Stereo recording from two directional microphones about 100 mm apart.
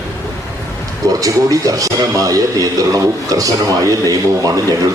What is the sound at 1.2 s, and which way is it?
A man's voice, 35° right (ahead or behind).